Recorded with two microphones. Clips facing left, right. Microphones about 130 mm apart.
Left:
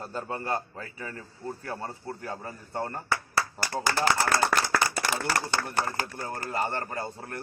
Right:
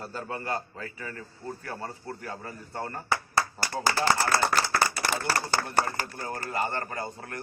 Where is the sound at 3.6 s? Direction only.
30° right (ahead or behind).